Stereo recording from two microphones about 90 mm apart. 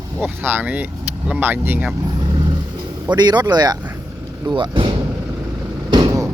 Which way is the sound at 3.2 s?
50° right (ahead or behind).